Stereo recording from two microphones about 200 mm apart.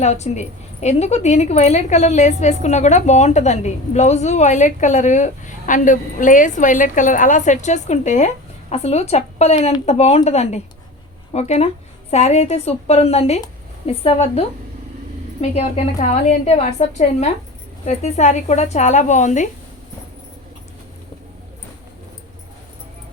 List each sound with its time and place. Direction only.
0.0 s a woman's voice: 35° left (ahead or behind)